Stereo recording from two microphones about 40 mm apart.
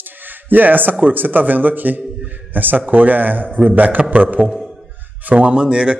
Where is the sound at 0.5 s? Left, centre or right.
Right.